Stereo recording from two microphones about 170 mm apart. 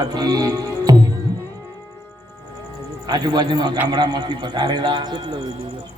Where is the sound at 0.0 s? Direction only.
25° right (ahead or behind).